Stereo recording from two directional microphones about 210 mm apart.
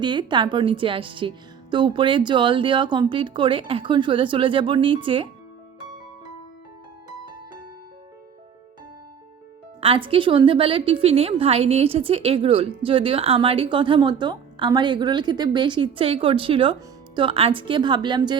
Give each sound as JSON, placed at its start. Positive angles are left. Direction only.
{"t": 0.0, "sound": "a woman's voice", "side_deg": -20}
{"t": 9.8, "sound": "a woman's voice", "side_deg": -25}